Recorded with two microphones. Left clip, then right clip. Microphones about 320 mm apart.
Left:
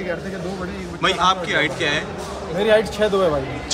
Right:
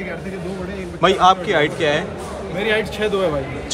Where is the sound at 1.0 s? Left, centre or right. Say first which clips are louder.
Right 4 dB; centre.